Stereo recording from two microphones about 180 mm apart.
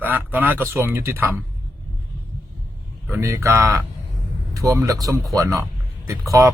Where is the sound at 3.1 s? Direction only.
15° right (ahead or behind).